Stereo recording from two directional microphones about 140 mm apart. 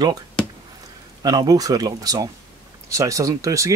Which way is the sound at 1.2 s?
25° right (ahead or behind).